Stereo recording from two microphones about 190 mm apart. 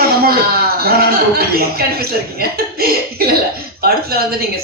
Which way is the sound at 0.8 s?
55° right (ahead or behind).